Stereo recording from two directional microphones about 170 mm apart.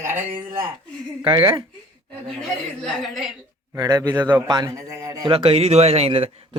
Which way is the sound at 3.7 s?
20° right (ahead or behind).